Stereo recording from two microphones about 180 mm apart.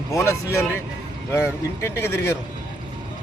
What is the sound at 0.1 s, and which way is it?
Speech, 15° left (ahead or behind).